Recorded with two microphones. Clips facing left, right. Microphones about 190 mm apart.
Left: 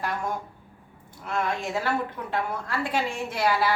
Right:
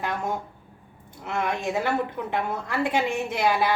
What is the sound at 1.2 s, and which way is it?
A woman's voice, 20° right (ahead or behind).